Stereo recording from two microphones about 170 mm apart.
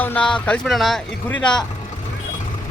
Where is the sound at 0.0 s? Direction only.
10° left (ahead or behind).